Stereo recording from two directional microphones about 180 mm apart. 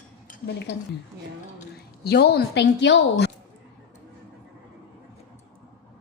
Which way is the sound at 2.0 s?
65° left (ahead or behind).